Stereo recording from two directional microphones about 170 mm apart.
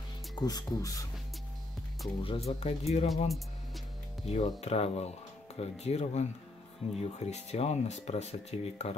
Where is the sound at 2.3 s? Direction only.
40° left (ahead or behind).